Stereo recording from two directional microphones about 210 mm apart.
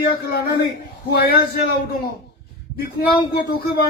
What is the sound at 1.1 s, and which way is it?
Speech, 45° left (ahead or behind).